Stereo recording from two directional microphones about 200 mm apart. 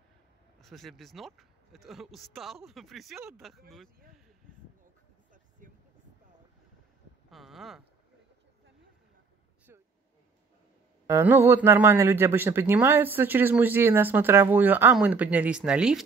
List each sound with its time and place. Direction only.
0.6 s speech: centre (ahead or behind)
3.2 s a man's voice: 10° right (ahead or behind)
5.6 s vehicle: 40° right (ahead or behind)
7.2 s speech: centre (ahead or behind)
9.7 s a sound: 10° right (ahead or behind)
11.1 s a man's voice: 15° right (ahead or behind)